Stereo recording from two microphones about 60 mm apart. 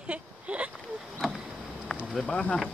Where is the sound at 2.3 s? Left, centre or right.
Centre.